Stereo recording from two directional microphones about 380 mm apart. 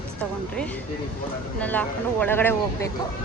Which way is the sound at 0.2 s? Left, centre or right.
Centre.